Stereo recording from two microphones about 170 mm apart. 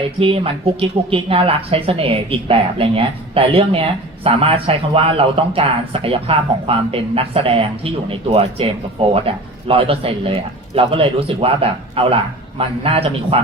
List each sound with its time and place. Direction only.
0.2 s a woman's voice: 30° right (ahead or behind)